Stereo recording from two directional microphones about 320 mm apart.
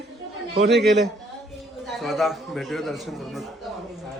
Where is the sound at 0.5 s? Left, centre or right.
Right.